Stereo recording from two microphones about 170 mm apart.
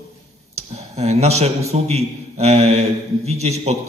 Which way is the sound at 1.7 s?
40° right (ahead or behind).